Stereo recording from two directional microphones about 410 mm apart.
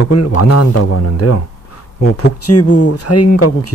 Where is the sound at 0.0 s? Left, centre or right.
Left.